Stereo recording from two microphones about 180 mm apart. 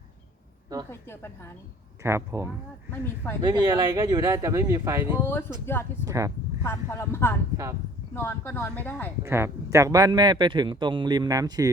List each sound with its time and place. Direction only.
0.9 s a woman's voice: 15° left (ahead or behind)
2.0 s a man's voice: 15° right (ahead or behind)
5.2 s a woman's voice: 15° left (ahead or behind)
6.1 s speech: 15° right (ahead or behind)
6.6 s a woman's voice: 15° left (ahead or behind)
7.5 s a man's voice: 20° right (ahead or behind)
8.1 s a woman's voice: 10° left (ahead or behind)
9.2 s a man's voice: 15° right (ahead or behind)